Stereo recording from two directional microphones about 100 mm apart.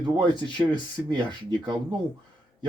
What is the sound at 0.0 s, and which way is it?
Speech, 45° right (ahead or behind).